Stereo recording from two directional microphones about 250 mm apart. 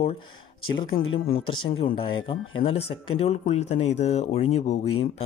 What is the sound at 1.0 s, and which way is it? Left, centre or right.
Speech, left.